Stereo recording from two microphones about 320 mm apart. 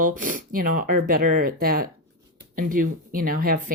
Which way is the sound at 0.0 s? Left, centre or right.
Right.